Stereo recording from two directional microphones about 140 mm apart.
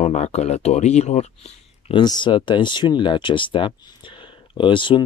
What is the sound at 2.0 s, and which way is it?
Speech, 35° left (ahead or behind).